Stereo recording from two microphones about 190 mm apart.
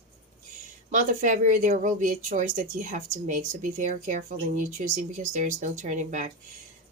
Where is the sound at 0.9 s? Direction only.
40° right (ahead or behind).